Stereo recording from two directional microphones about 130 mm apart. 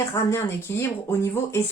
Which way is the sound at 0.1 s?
20° left (ahead or behind).